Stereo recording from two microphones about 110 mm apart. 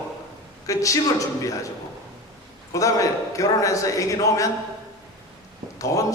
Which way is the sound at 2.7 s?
30° left (ahead or behind).